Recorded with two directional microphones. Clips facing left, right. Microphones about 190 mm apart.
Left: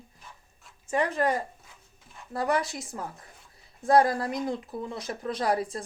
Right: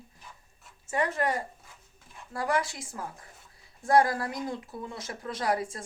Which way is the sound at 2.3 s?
25° left (ahead or behind).